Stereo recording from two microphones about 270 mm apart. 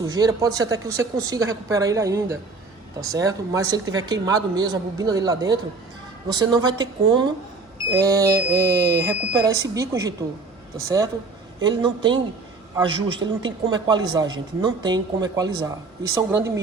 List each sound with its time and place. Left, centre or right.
0.0 s a man's voice: centre